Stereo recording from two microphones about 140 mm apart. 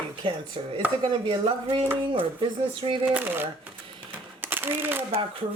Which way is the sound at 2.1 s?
40° right (ahead or behind).